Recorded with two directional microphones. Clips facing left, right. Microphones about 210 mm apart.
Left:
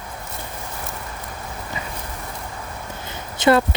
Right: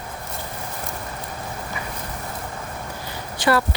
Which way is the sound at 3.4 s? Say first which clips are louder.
Left 4 dB; 20° left (ahead or behind).